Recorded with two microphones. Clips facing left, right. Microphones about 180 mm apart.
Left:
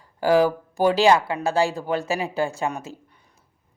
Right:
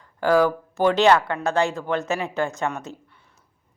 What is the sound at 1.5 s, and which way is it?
Speech, 30° left (ahead or behind).